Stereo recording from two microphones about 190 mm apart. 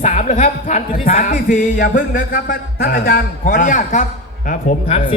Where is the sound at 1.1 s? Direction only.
45° left (ahead or behind).